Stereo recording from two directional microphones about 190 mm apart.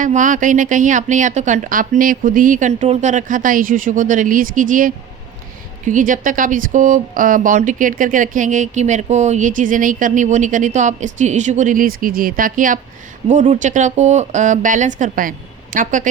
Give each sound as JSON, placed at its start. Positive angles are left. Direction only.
{"t": 0.0, "sound": "speech", "side_deg": -40}